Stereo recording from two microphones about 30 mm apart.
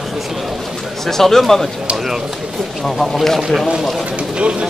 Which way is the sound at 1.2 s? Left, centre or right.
Centre.